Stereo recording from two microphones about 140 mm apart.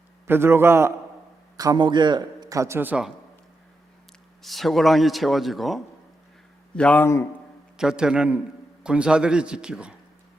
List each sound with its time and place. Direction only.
0.3 s a man's voice: 15° right (ahead or behind)
4.4 s a man's voice: centre (ahead or behind)
6.7 s a man's voice: 10° left (ahead or behind)
7.8 s a man's voice: 5° right (ahead or behind)